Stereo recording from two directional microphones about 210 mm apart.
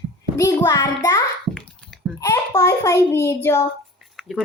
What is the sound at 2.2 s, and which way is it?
A child's voice, 15° left (ahead or behind).